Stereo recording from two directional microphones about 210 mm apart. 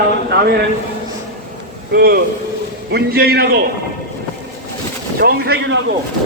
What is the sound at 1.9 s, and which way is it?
A man's voice, 45° right (ahead or behind).